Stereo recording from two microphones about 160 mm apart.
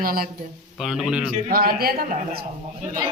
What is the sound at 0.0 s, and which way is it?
Speech, 65° right (ahead or behind).